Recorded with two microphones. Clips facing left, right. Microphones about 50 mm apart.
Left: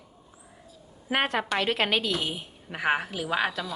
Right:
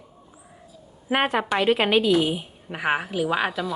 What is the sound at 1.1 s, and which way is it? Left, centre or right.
A woman's voice, centre.